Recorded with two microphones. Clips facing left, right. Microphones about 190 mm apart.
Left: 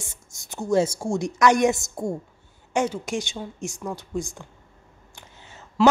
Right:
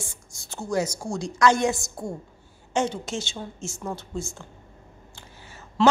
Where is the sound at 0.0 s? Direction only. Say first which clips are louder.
Right 3 dB; 20° left (ahead or behind).